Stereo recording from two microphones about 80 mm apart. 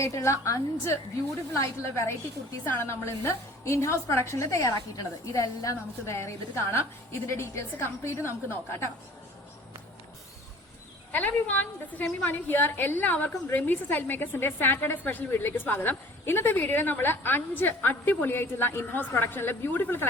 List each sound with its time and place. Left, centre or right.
0.0 s a woman's voice: left
11.1 s a woman's voice: left